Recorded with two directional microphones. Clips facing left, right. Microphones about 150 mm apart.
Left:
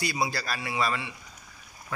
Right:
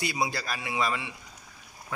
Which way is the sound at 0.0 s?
20° right (ahead or behind).